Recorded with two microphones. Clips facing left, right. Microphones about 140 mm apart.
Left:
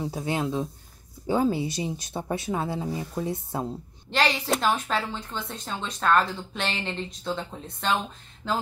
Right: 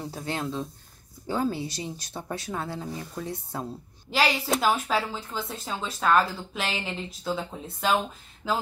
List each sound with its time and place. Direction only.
0.0 s speech: 15° left (ahead or behind)
4.1 s speech: 5° right (ahead or behind)